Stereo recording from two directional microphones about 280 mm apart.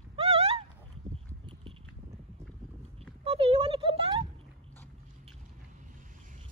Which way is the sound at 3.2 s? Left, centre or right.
Right.